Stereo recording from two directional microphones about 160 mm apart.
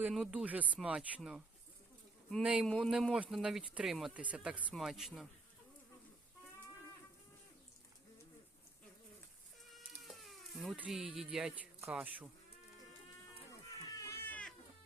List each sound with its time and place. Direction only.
0.1 s speech: 5° right (ahead or behind)
9.7 s cat: centre (ahead or behind)
11.9 s speech: 5° right (ahead or behind)
13.5 s cat: 20° left (ahead or behind)